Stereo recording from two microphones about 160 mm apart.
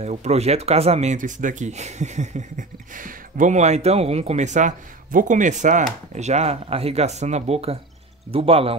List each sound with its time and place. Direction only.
0.0 s speech: 45° right (ahead or behind)